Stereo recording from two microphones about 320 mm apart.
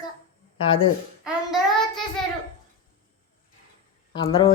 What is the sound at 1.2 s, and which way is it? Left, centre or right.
Child singing, centre.